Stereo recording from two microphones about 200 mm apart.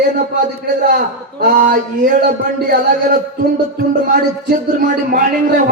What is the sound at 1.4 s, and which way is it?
Speech, 40° right (ahead or behind).